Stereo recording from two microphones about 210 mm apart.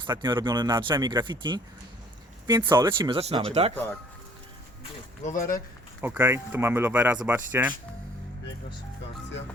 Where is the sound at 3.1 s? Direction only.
30° right (ahead or behind).